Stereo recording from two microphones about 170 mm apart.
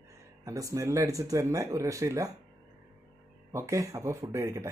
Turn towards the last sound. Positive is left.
turn(degrees=-15)  # may be behind; listen again after turning